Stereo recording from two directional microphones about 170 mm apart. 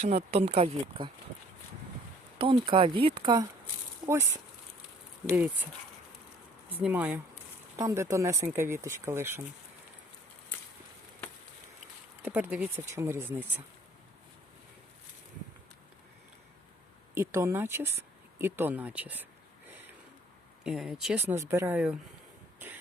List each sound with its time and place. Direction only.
0.0 s speech: 40° right (ahead or behind)
2.4 s speech: 30° right (ahead or behind)
4.0 s speech: 15° right (ahead or behind)
5.3 s speech: 10° right (ahead or behind)
6.8 s speech: 10° right (ahead or behind)
7.8 s speech: 20° right (ahead or behind)
12.2 s speech: 10° right (ahead or behind)
17.2 s speech: 15° right (ahead or behind)
20.7 s speech: centre (ahead or behind)